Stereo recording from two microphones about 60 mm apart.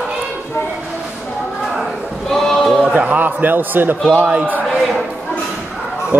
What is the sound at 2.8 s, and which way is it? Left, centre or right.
A man's voice, right.